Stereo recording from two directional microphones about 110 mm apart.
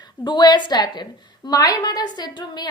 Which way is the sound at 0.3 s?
40° left (ahead or behind).